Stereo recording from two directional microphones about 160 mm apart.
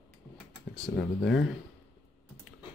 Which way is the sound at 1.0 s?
90° left.